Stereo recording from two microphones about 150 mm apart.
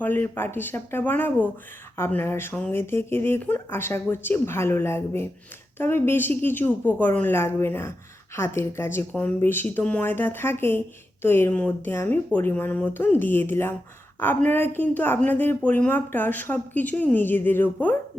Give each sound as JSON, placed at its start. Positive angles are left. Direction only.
{"t": 0.0, "sound": "speech", "side_deg": 15}